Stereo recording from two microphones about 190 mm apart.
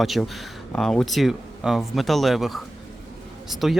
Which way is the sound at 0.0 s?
Centre (ahead or behind).